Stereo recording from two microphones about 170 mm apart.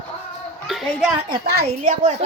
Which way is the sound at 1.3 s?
65° right (ahead or behind).